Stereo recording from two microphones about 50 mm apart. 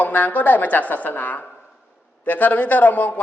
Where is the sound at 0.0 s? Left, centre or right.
Left.